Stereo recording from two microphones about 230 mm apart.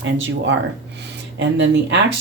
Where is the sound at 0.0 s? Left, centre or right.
Right.